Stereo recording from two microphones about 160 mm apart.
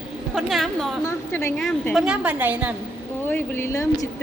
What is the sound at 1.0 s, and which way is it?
Speech, 15° left (ahead or behind).